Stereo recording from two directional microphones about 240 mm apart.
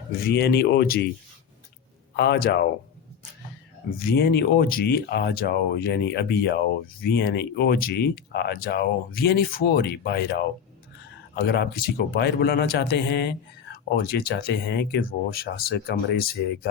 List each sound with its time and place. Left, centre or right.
0.3 s a man's voice: left
2.1 s a man's voice: left
3.9 s a man's voice: left